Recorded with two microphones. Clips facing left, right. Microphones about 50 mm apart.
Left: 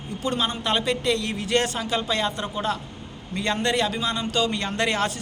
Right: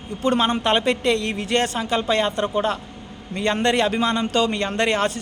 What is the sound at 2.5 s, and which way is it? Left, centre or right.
A man's voice, right.